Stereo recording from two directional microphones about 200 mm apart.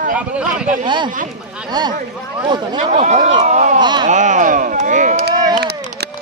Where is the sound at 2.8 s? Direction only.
35° right (ahead or behind).